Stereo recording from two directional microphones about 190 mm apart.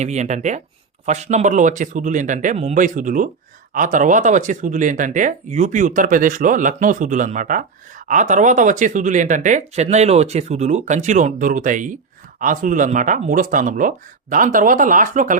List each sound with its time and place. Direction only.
0.0 s speech: 35° right (ahead or behind)